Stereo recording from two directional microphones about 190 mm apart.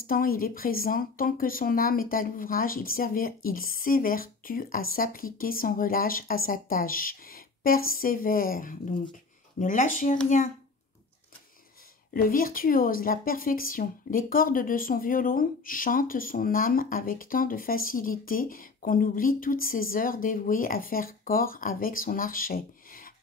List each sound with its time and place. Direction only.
0.0 s speech: 50° left (ahead or behind)
12.1 s speech: 50° left (ahead or behind)